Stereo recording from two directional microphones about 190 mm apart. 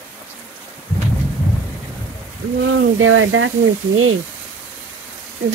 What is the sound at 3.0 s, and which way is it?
Speech, 90° right.